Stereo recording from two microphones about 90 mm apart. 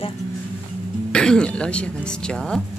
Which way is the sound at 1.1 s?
10° left (ahead or behind).